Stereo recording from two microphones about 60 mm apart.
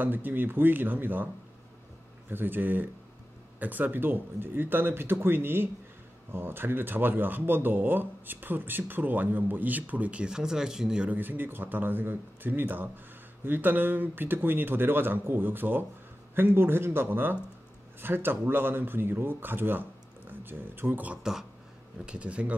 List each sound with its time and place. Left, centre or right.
0.0 s speech: right; by 11.1 s centre
11.1 s speech: right
21.1 s speech: centre